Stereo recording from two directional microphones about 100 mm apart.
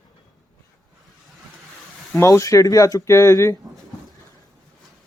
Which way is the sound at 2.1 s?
30° left (ahead or behind).